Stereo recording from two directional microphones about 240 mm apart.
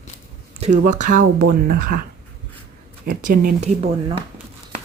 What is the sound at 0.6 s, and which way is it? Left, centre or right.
Speech, right.